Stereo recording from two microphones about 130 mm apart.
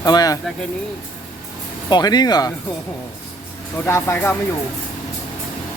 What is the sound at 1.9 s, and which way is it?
Speech, 30° left (ahead or behind).